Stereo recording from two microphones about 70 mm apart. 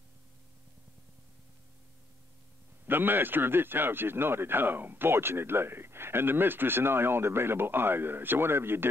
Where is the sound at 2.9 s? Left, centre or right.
Right.